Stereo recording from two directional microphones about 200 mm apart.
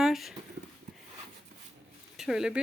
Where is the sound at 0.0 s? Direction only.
Centre (ahead or behind).